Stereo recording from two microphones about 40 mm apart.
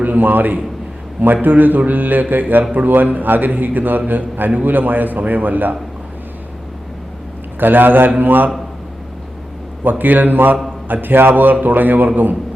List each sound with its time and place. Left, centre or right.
0.0 s a man's voice: right
7.6 s a man's voice: right
9.8 s a man's voice: right